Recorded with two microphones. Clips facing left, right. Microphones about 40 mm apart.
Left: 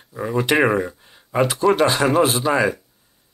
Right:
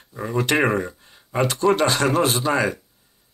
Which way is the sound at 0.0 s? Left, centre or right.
Centre.